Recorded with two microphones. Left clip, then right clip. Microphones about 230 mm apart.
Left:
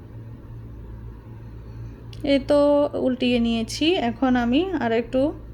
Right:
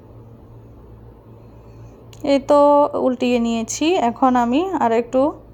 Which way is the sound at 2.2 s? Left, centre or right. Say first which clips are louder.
Right 5 dB; centre.